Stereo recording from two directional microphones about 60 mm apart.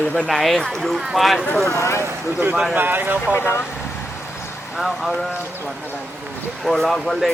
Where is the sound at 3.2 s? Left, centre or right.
Left.